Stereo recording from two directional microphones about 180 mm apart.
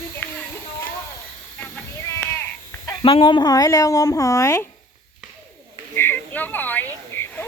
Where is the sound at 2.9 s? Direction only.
30° left (ahead or behind).